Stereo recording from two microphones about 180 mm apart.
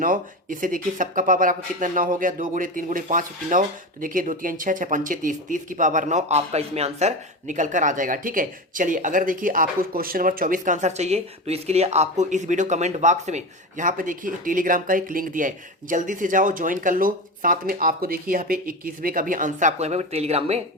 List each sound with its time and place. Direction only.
0.0 s speech: 50° right (ahead or behind)